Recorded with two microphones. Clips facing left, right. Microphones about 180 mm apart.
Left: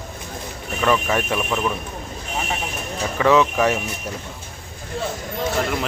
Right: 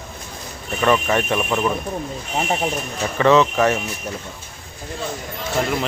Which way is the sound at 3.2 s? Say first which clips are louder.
Right 2 dB; 10° left (ahead or behind).